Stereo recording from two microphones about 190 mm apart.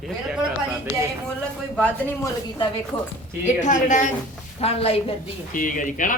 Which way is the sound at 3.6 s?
40° left (ahead or behind).